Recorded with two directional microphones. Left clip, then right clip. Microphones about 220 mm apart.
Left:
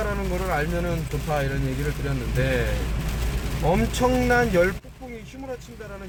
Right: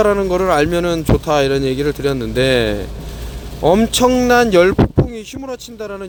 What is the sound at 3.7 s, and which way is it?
Speech, 45° right (ahead or behind).